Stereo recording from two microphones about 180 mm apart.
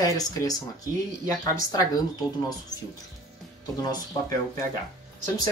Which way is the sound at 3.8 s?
20° left (ahead or behind).